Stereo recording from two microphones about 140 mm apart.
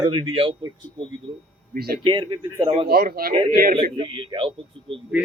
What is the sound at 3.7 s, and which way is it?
Speech, 40° right (ahead or behind).